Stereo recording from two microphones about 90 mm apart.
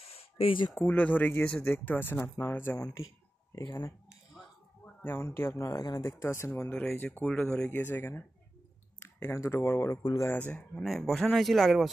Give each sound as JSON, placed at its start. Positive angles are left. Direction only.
{"t": 0.1, "sound": "a sound", "side_deg": 90}
{"t": 0.7, "sound": "speech", "side_deg": 20}
{"t": 3.5, "sound": "speech", "side_deg": 40}
{"t": 4.8, "sound": "a man's voice", "side_deg": 25}
{"t": 5.8, "sound": "speech", "side_deg": 40}
{"t": 6.8, "sound": "speech", "side_deg": 10}
{"t": 7.8, "sound": "speech", "side_deg": 25}
{"t": 10.4, "sound": "speech", "side_deg": 10}
{"t": 10.8, "sound": "speech", "side_deg": 0}